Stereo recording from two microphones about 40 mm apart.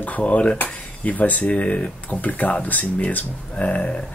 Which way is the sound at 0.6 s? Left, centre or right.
Left.